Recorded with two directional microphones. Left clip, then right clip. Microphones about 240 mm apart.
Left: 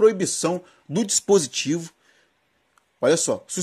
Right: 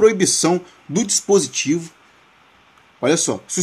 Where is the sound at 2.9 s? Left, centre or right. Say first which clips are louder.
Right 1 dB; centre.